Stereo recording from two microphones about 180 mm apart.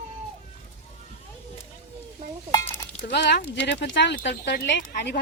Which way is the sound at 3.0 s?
65° left (ahead or behind).